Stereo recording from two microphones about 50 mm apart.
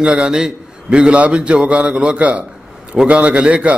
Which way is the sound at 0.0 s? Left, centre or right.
Centre.